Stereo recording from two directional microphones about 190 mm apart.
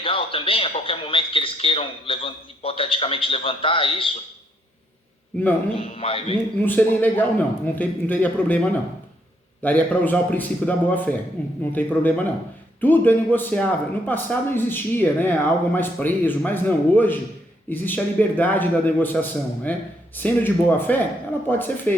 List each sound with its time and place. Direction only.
0.0 s speech: 30° left (ahead or behind)
5.7 s a man's voice: 30° left (ahead or behind)
6.6 s a man's voice: 10° left (ahead or behind)